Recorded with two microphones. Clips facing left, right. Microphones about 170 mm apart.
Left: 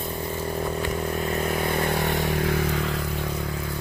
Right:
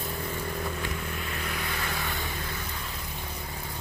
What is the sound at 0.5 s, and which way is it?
Vehicle, 35° left (ahead or behind).